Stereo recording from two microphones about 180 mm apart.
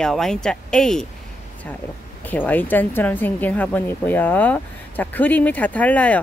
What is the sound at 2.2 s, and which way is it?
Speech, 10° left (ahead or behind).